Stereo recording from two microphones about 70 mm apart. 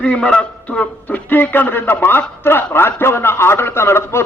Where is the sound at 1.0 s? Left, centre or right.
Left.